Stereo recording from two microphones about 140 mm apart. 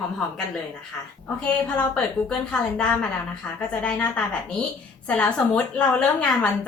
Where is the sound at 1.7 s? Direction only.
5° left (ahead or behind).